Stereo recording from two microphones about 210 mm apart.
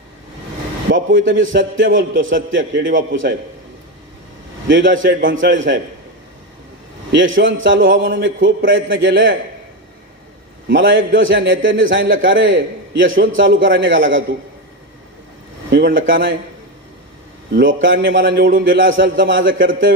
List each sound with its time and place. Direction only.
0.9 s a man's voice: 40° right (ahead or behind)
1.4 s a man's voice: 65° right (ahead or behind)
4.7 s a man's voice: 65° right (ahead or behind)
7.1 s a man's voice: 65° right (ahead or behind)
10.7 s a man's voice: 60° right (ahead or behind)
15.7 s a man's voice: 60° right (ahead or behind)
17.5 s a man's voice: 60° right (ahead or behind)
18.3 s a man's voice: 45° right (ahead or behind)
18.7 s a man's voice: 65° right (ahead or behind)